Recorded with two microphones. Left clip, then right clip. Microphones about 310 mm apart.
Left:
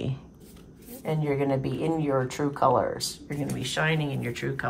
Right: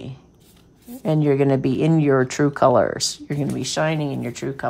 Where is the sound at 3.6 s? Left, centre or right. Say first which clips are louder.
Right 4 dB; centre.